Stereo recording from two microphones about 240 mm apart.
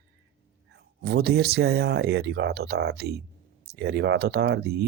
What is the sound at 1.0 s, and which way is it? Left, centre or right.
Speech, right.